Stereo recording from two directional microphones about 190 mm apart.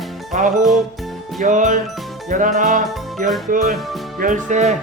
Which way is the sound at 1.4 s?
40° right (ahead or behind).